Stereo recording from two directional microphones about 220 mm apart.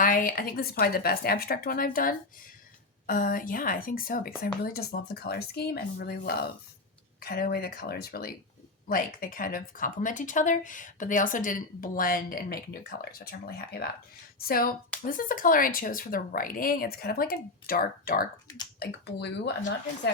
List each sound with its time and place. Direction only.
0.0 s speech: 40° left (ahead or behind)